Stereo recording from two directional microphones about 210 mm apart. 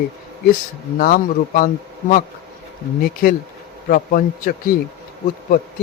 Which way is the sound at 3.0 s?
40° left (ahead or behind).